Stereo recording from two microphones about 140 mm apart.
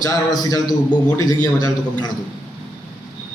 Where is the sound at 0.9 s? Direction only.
10° left (ahead or behind).